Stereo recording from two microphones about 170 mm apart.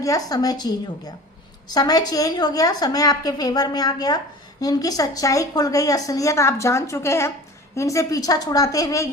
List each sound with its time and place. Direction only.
0.0 s a woman's voice: 20° left (ahead or behind)